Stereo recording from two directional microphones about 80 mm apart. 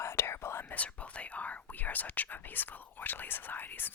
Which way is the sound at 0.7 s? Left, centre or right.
Centre.